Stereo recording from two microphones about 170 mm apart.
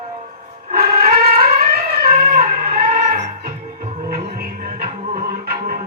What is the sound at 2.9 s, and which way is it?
Music, 45° right (ahead or behind).